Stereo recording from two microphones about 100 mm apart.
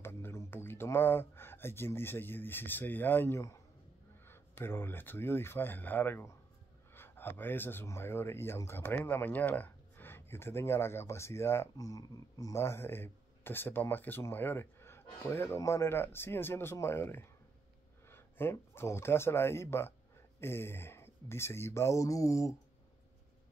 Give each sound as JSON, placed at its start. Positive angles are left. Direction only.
{"t": 0.0, "sound": "speech", "side_deg": 25}